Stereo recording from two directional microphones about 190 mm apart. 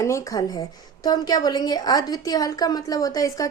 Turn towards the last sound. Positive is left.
turn(degrees=20)  # may be behind; listen again after turning